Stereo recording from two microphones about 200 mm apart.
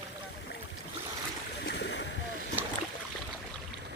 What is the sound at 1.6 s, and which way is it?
Splash, 60° left (ahead or behind).